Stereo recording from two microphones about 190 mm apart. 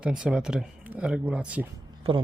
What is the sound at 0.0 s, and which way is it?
Speech, 5° right (ahead or behind).